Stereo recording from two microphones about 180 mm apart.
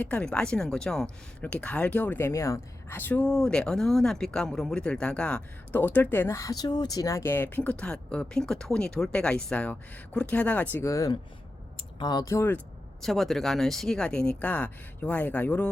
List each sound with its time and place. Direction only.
0.0 s speech: 5° left (ahead or behind)
13.0 s speech: centre (ahead or behind)